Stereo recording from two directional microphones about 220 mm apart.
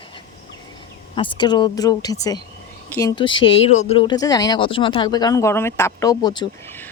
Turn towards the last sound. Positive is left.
turn(degrees=20)  # may be behind; listen again after turning